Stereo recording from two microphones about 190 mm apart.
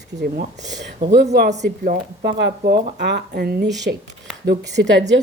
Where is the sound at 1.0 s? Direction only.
60° right (ahead or behind).